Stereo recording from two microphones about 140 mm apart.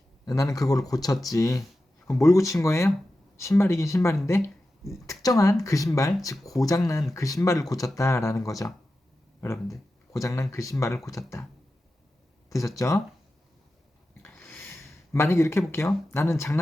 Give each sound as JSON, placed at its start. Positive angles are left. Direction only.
{"t": 0.3, "sound": "speech", "side_deg": 25}
{"t": 10.1, "sound": "speech", "side_deg": 20}
{"t": 12.5, "sound": "speech", "side_deg": 20}
{"t": 14.2, "sound": "a sound", "side_deg": 15}